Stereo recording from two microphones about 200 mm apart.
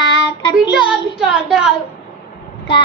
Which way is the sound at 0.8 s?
5° right (ahead or behind).